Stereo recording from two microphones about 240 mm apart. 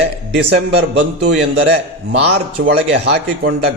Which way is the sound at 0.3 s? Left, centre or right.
Right.